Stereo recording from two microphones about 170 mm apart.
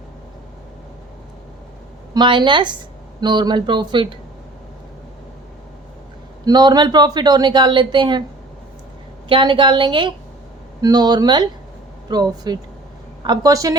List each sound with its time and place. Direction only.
2.1 s speech: 25° right (ahead or behind)
6.4 s speech: 25° right (ahead or behind)
9.3 s speech: 30° right (ahead or behind)